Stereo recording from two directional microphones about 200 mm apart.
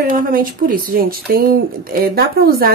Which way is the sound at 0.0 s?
45° right (ahead or behind).